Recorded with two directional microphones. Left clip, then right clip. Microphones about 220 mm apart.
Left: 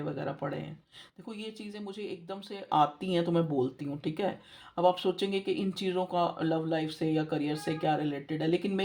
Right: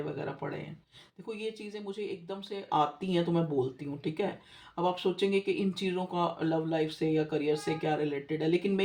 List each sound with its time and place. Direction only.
0.2 s speech: 35° left (ahead or behind)